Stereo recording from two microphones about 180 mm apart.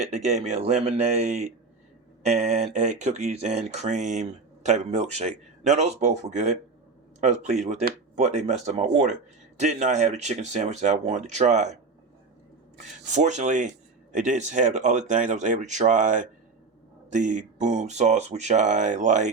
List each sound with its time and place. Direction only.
0.0 s speech: 40° right (ahead or behind)
13.1 s speech: 40° right (ahead or behind)